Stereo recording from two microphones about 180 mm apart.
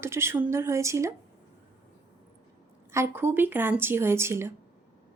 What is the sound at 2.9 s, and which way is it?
Speech, 15° right (ahead or behind).